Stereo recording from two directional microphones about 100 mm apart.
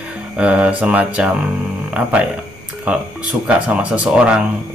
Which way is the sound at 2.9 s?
10° right (ahead or behind).